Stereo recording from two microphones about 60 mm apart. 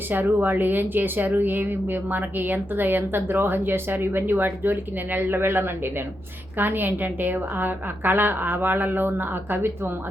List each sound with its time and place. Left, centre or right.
0.1 s speech: right